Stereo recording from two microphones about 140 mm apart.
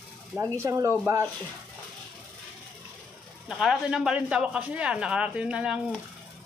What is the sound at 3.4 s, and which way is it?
Speech, 5° right (ahead or behind).